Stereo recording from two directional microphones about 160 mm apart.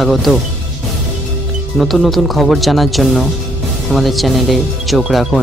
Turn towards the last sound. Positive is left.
turn(degrees=0)  # may be behind; listen again after turning